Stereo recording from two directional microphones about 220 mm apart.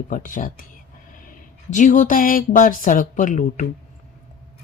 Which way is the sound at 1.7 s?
35° left (ahead or behind).